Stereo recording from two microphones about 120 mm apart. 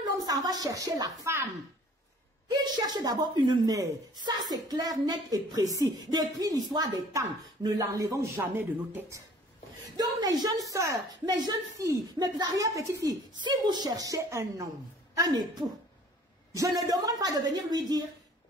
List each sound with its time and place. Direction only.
0.0 s a woman's voice: 30° right (ahead or behind)
2.4 s speech: 35° right (ahead or behind)
9.9 s speech: 35° right (ahead or behind)